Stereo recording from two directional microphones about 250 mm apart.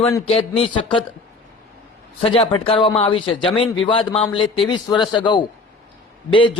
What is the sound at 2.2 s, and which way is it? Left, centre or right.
A man's voice, left.